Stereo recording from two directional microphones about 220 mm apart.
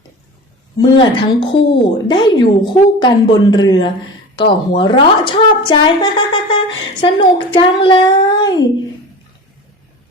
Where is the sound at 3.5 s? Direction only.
20° left (ahead or behind).